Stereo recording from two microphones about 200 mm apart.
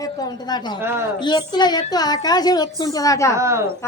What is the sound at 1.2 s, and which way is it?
A woman's voice, 20° left (ahead or behind).